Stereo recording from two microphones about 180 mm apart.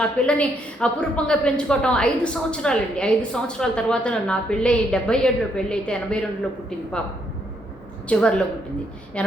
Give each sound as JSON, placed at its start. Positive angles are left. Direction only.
{"t": 0.0, "sound": "a woman's voice", "side_deg": 5}
{"t": 8.0, "sound": "a woman's voice", "side_deg": 5}